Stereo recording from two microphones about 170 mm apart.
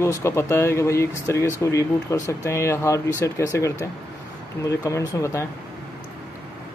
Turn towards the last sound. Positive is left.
turn(degrees=15)  # may be behind; listen again after turning